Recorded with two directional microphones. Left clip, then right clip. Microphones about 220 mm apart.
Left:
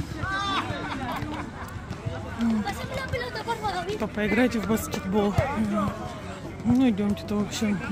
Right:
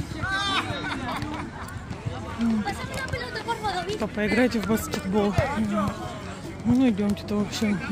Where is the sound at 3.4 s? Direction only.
Centre (ahead or behind).